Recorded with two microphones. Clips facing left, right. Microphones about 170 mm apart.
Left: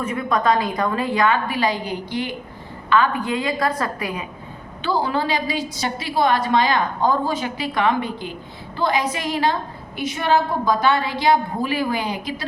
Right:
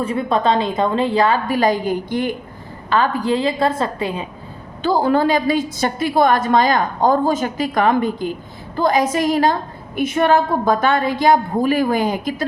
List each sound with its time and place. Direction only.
0.0 s a woman's voice: 30° right (ahead or behind); by 2.3 s 50° right (ahead or behind)
2.9 s a woman's voice: 35° right (ahead or behind)
4.8 s a woman's voice: 45° right (ahead or behind)